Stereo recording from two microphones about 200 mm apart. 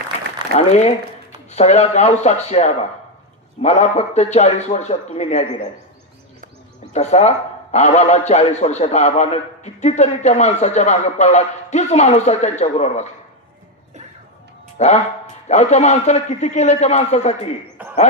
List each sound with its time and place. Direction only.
0.5 s a man's voice: 35° left (ahead or behind)
6.9 s a man's voice: 35° left (ahead or behind)
14.8 s a man's voice: 35° left (ahead or behind)